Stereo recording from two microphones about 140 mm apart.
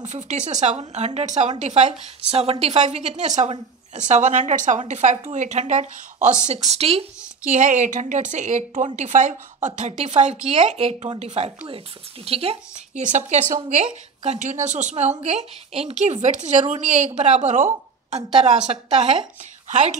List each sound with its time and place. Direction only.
0.0 s a woman's voice: 55° right (ahead or behind)
7.5 s a woman's voice: 60° right (ahead or behind)
13.0 s a woman's voice: 60° right (ahead or behind)